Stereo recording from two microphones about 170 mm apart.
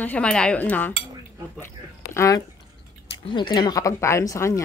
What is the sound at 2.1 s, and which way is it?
Speech, 20° left (ahead or behind).